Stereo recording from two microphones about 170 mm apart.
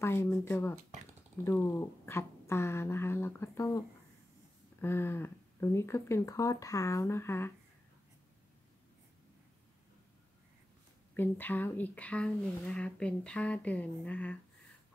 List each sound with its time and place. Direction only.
0.0 s speech: 15° left (ahead or behind)
4.8 s speech: 15° left (ahead or behind)
11.1 s speech: 10° left (ahead or behind)